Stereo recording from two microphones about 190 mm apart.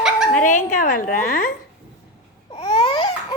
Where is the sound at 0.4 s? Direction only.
45° left (ahead or behind).